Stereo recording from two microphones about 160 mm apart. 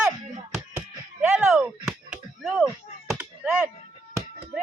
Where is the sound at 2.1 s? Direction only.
5° right (ahead or behind).